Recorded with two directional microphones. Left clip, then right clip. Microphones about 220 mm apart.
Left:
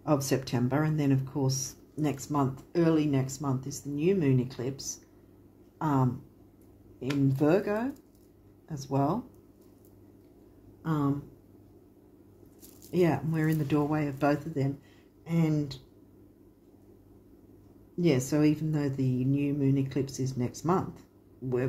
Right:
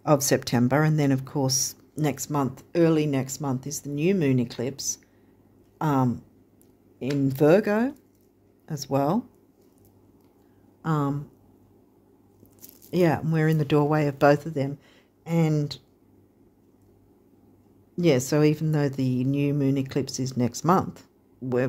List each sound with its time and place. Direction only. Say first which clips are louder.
0.0 s speech: right 7 dB; 50° right (ahead or behind)
7.2 s speech: right 7 dB; 50° right (ahead or behind)
10.8 s speech: right 3 dB; 50° right (ahead or behind)
12.9 s speech: right 4 dB; 50° right (ahead or behind)
17.9 s speech: right 5 dB; 50° right (ahead or behind)